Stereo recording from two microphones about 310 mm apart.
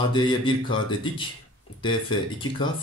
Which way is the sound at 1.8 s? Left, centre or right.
Centre.